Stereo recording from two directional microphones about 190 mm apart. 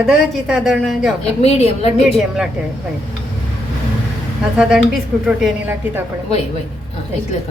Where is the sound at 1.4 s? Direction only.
35° left (ahead or behind).